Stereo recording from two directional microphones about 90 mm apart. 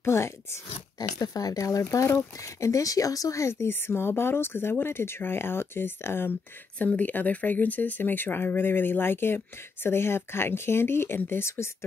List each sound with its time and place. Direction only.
0.0 s speech: 30° left (ahead or behind)
0.9 s speech: 45° left (ahead or behind); by 11.7 s 25° left (ahead or behind)